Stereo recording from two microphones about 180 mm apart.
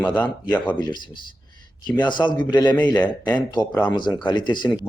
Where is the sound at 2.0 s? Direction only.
25° left (ahead or behind).